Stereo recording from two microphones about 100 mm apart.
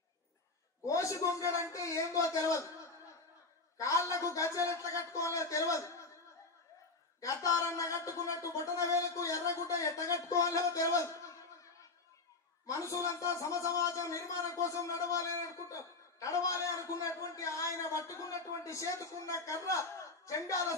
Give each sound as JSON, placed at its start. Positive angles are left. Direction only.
{"t": 0.8, "sound": "a man's voice", "side_deg": 35}
{"t": 7.2, "sound": "a man's voice", "side_deg": 35}
{"t": 12.6, "sound": "a man's voice", "side_deg": 35}